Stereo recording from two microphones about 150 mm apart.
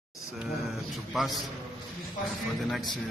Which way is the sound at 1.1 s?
Centre (ahead or behind).